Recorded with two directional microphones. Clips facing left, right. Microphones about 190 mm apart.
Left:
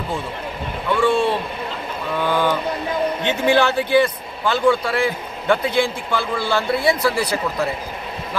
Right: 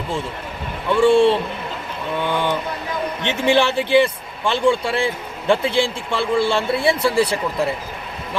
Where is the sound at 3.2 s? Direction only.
25° right (ahead or behind).